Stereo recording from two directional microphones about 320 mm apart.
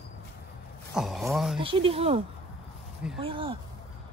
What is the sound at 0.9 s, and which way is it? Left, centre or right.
Speech, centre.